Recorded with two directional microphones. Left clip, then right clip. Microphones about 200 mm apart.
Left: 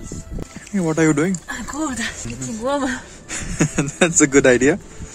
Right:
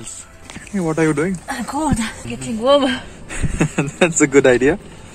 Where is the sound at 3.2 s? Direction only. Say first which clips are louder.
Even; 35° left (ahead or behind).